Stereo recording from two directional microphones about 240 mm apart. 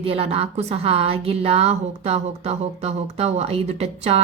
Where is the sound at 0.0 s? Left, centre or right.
Right.